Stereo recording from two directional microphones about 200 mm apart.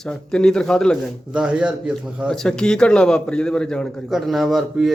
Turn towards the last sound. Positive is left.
turn(degrees=0)  # may be behind; listen again after turning